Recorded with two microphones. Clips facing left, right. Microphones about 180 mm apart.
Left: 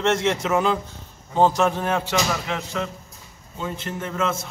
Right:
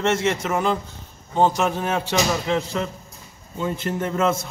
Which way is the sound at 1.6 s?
20° right (ahead or behind).